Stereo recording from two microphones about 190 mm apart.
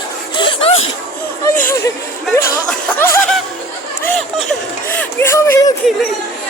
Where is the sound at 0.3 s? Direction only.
30° left (ahead or behind).